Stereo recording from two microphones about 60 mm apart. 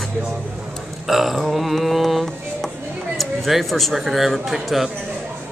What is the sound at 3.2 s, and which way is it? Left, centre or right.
A man's voice, centre.